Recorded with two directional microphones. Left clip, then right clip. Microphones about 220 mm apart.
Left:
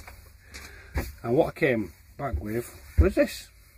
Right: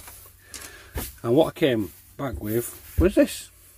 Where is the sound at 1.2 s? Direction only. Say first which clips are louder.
Right 4 dB; 50° right (ahead or behind).